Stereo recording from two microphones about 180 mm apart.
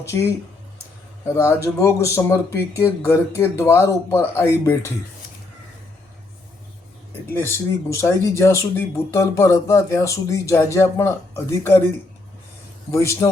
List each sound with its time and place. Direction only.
0.0 s speech: 15° left (ahead or behind)
1.6 s speech: 15° left (ahead or behind)
7.3 s speech: 15° left (ahead or behind)
12.9 s speech: 15° left (ahead or behind)